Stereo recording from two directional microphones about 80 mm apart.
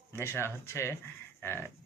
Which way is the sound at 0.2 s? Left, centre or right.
Left.